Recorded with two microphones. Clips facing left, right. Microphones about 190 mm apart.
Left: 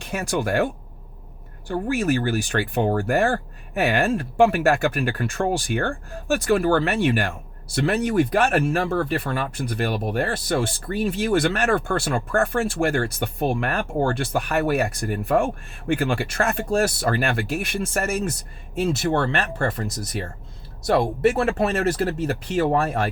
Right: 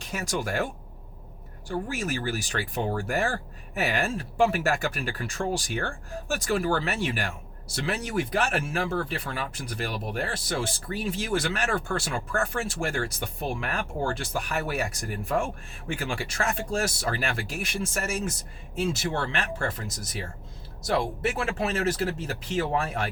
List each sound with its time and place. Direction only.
0.0 s speech: 60° left (ahead or behind)